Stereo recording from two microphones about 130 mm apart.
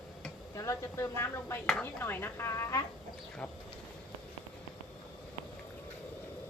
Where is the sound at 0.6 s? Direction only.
20° left (ahead or behind).